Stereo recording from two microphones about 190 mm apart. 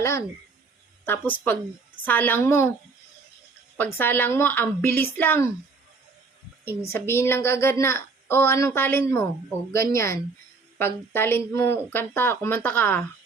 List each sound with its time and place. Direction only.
0.0 s a woman's voice: 15° left (ahead or behind)
3.8 s a woman's voice: 10° left (ahead or behind)
6.7 s a woman's voice: 15° left (ahead or behind)